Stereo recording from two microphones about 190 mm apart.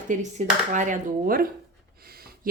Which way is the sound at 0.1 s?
40° right (ahead or behind).